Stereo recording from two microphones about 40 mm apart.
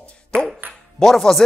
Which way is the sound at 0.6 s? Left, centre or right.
Right.